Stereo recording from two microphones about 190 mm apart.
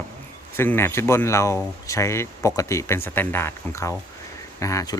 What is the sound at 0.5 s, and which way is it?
Speech, 10° left (ahead or behind).